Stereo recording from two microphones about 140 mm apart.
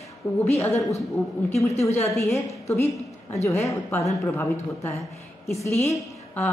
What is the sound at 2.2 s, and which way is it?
A woman's voice, 20° left (ahead or behind).